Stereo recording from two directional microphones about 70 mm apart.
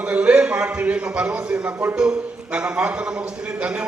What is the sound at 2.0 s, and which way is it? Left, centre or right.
A man's voice, centre.